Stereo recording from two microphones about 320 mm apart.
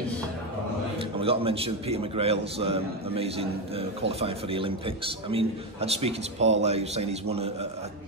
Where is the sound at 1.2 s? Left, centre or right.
Centre.